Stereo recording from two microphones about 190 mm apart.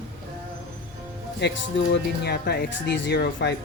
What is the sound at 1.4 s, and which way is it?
Speech, 65° left (ahead or behind).